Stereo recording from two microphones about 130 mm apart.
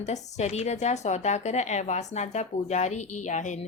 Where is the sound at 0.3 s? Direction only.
60° left (ahead or behind).